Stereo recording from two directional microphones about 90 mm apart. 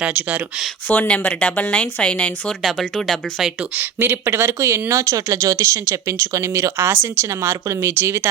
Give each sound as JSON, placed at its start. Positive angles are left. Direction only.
{"t": 0.0, "sound": "speech", "side_deg": -15}
{"t": 0.9, "sound": "speech", "side_deg": 15}
{"t": 2.6, "sound": "speech", "side_deg": 0}
{"t": 3.8, "sound": "speech", "side_deg": -20}